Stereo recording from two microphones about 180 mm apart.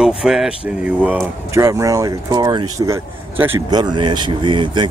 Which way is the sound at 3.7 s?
25° right (ahead or behind).